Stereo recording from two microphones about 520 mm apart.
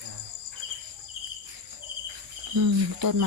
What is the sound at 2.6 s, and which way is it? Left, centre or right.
Cricket, right.